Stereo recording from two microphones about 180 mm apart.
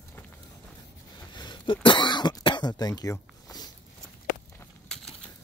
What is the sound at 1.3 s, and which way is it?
Cough, 25° left (ahead or behind).